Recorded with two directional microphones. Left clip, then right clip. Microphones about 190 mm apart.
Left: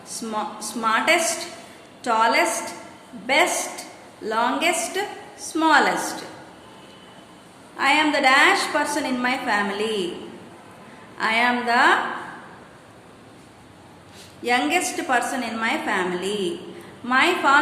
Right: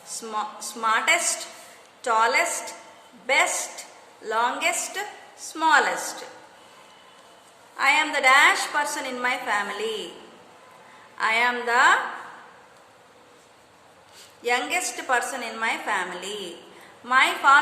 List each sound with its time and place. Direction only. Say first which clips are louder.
0.1 s a woman's voice: left 2 dB; 25° right (ahead or behind)
7.8 s a woman's voice: left 2 dB; 25° right (ahead or behind)
11.2 s a woman's voice: left 2 dB; 20° right (ahead or behind)
14.4 s a woman's voice: left 3 dB; 20° right (ahead or behind)